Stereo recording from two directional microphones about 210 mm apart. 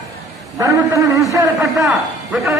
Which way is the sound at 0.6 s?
15° right (ahead or behind).